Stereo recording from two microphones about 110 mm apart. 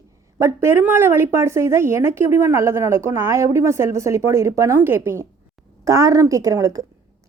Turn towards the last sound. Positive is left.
turn(degrees=-30)  # may be behind; listen again after turning